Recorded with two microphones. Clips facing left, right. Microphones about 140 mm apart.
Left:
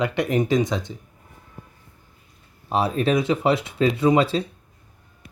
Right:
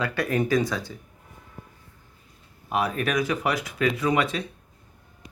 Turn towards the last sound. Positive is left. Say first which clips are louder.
# left 6 dB
turn(degrees=30)  # may be behind; listen again after turning